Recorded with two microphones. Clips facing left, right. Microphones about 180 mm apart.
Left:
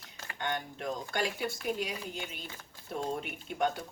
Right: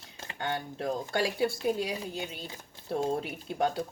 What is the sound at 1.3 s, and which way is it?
Speech, 30° right (ahead or behind).